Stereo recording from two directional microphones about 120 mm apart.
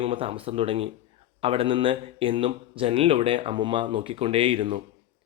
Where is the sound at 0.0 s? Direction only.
50° right (ahead or behind).